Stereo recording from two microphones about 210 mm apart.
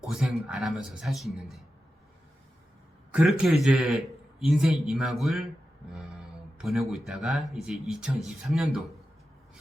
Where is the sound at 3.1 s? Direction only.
5° right (ahead or behind).